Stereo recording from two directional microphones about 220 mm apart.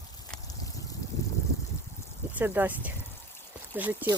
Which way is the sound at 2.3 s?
10° right (ahead or behind).